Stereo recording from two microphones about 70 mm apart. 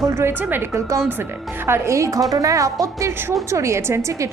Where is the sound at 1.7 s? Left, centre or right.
Right.